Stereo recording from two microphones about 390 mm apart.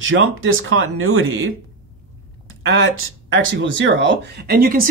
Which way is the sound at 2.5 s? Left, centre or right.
Right.